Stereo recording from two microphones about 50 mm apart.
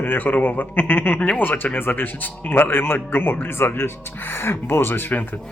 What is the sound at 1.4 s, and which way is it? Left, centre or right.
A man's voice, left.